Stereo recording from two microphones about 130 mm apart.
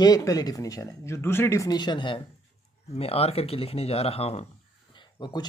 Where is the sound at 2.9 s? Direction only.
50° left (ahead or behind).